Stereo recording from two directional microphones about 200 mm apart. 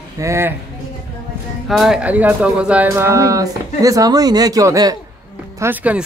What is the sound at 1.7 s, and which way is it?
Speech, centre (ahead or behind).